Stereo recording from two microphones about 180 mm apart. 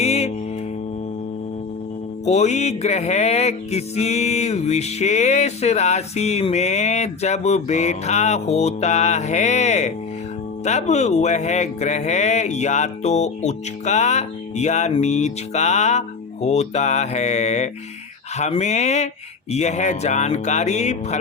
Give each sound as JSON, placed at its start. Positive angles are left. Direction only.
{"t": 0.0, "sound": "music", "side_deg": 35}
{"t": 2.2, "sound": "music", "side_deg": 40}